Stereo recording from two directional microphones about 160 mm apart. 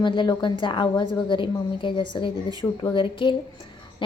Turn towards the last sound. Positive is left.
turn(degrees=30)  # may be behind; listen again after turning